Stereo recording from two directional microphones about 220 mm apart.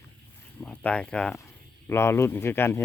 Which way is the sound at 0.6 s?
5° left (ahead or behind).